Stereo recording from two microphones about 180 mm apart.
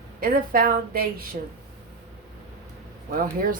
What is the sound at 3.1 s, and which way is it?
Speech, 50° right (ahead or behind).